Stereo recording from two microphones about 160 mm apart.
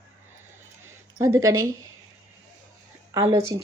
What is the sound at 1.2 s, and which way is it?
Speech, 20° right (ahead or behind).